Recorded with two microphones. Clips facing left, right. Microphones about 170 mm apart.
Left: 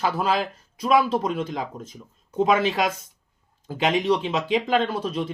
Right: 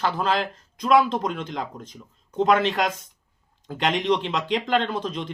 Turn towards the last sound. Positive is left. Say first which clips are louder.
# left 1 dB
turn(degrees=5)  # may be behind; listen again after turning